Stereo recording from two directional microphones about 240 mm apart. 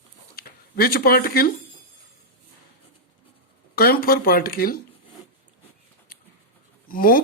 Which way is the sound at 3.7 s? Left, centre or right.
Left.